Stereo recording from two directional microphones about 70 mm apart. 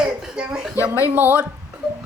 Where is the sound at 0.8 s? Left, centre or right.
Left.